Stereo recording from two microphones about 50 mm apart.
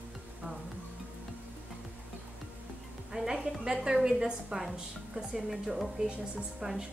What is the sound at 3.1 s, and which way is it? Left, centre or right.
A woman's voice, centre.